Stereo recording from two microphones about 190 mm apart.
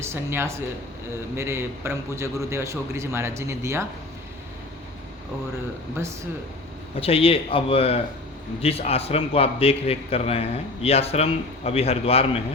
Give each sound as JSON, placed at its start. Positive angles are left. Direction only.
{"t": 0.0, "sound": "a man's voice", "side_deg": -15}
{"t": 7.0, "sound": "a man's voice", "side_deg": 30}